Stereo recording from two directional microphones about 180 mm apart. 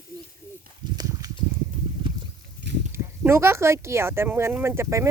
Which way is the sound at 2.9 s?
15° right (ahead or behind).